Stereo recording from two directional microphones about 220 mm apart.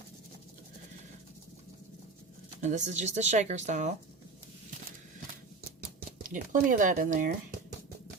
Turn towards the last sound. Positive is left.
turn(degrees=-35)  # may be behind; listen again after turning